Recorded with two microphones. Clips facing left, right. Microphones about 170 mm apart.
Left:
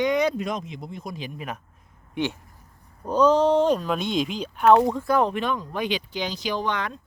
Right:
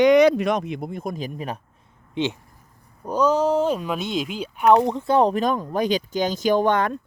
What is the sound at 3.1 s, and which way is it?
Speech, 10° right (ahead or behind).